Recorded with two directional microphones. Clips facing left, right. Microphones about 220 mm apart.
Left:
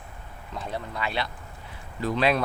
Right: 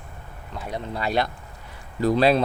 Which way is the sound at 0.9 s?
40° right (ahead or behind).